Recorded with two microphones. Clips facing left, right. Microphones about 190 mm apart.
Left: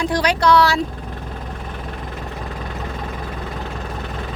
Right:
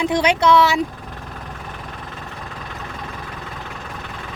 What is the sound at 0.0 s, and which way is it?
Speech, 25° right (ahead or behind).